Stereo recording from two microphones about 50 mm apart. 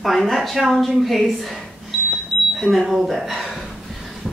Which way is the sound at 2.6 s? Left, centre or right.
Centre.